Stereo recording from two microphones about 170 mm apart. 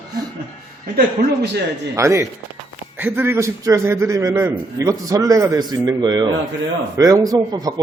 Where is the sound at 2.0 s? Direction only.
15° right (ahead or behind).